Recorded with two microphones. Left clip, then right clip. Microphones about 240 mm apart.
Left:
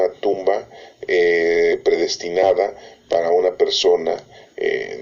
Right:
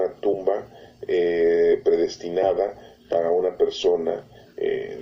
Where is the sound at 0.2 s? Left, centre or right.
Left.